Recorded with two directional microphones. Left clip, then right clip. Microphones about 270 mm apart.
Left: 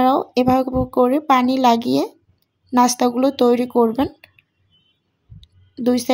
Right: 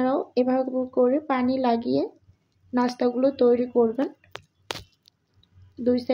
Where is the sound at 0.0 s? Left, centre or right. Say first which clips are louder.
Left 7 dB; left.